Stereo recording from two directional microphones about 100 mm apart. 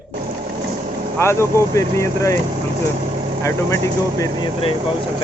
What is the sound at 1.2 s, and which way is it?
Speech, 25° left (ahead or behind).